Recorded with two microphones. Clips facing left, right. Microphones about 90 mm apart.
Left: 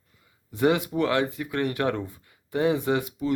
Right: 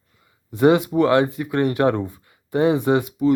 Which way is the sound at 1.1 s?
20° right (ahead or behind).